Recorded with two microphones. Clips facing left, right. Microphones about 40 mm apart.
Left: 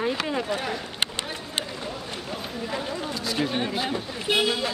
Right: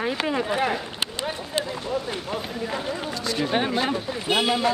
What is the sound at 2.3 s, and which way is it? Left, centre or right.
Speech, centre.